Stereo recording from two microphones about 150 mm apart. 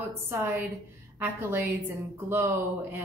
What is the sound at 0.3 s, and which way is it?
A woman's voice, 15° right (ahead or behind).